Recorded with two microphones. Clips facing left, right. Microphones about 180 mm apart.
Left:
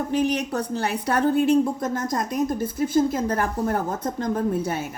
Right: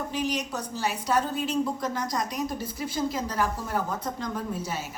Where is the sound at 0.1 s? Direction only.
60° left (ahead or behind).